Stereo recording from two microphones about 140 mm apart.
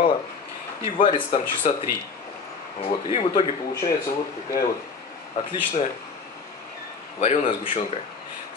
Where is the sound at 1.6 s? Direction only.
60° left (ahead or behind).